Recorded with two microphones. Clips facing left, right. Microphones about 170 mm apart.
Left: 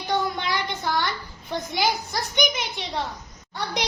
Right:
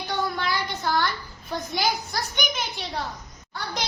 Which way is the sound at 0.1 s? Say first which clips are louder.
Left 2 dB; 20° left (ahead or behind).